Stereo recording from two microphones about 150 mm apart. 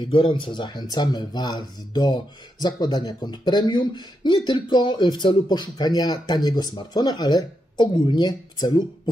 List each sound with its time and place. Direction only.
0.0 s speech: 35° left (ahead or behind)